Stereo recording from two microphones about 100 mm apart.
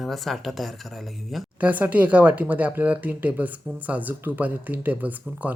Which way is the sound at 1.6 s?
15° right (ahead or behind).